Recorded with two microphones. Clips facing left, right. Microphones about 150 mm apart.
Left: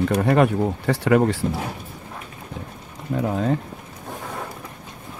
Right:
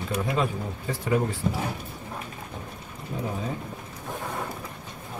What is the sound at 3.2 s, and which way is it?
Speech, 75° left (ahead or behind).